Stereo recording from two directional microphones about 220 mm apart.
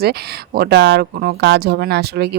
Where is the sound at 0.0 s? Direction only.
45° right (ahead or behind).